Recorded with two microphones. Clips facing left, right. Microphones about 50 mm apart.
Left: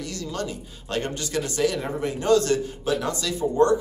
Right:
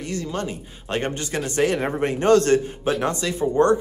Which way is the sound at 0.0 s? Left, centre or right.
Right.